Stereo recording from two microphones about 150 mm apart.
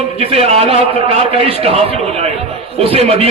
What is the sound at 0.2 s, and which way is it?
A man's voice, 40° right (ahead or behind).